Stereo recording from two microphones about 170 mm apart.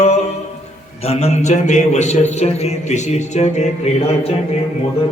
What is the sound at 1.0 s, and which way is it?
Speech, 40° left (ahead or behind).